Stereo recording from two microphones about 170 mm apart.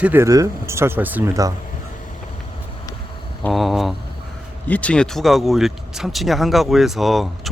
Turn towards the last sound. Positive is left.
turn(degrees=0)  # may be behind; listen again after turning